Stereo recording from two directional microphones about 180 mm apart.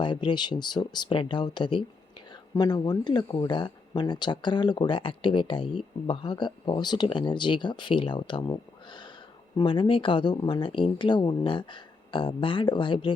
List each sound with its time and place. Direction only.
0.0 s speech: 25° left (ahead or behind)